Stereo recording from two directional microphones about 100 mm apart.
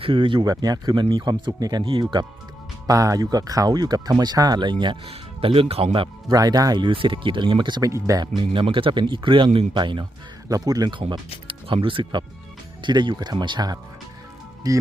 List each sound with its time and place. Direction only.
0.0 s speech: 60° right (ahead or behind)
0.4 s speech: 40° right (ahead or behind)
1.8 s speech: 55° right (ahead or behind)
2.8 s speech: 35° right (ahead or behind); by 4.9 s 50° right (ahead or behind)
5.0 s speech: 75° right (ahead or behind)
6.2 s speech: 40° right (ahead or behind)
6.8 s speech: 60° right (ahead or behind)
7.8 s speech: 35° right (ahead or behind)
8.4 s speech: 60° right (ahead or behind)
10.5 s speech: 40° right (ahead or behind)
11.4 s speech: 60° right (ahead or behind)
12.8 s speech: 50° right (ahead or behind)
14.7 s speech: 35° right (ahead or behind)